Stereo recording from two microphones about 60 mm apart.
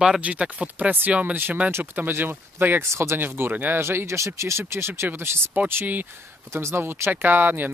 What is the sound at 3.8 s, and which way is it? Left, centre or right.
Speech, right.